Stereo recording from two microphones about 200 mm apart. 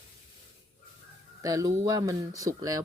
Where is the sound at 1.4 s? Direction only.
15° right (ahead or behind).